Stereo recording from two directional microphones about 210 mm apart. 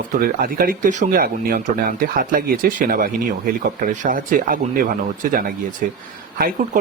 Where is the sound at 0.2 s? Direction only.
45° right (ahead or behind).